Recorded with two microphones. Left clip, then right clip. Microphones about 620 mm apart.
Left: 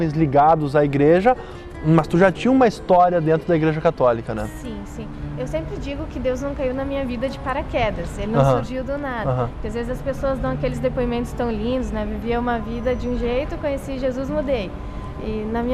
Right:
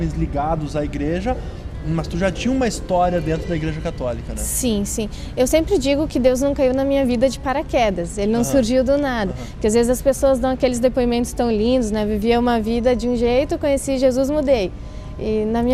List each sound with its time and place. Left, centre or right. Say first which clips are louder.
0.0 s a man's voice: left 8 dB; left
4.6 s a woman's voice: right 11 dB; right